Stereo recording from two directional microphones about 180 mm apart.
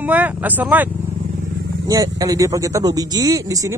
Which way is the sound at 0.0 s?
10° right (ahead or behind).